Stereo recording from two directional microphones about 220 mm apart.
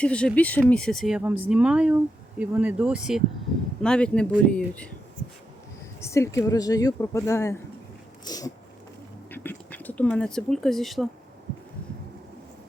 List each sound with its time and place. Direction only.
0.0 s speech: 5° left (ahead or behind)
6.0 s speech: 10° left (ahead or behind)